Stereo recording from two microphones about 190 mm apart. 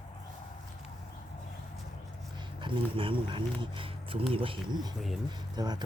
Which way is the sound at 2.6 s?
25° right (ahead or behind).